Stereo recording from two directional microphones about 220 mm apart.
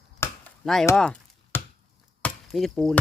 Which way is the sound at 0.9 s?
5° left (ahead or behind).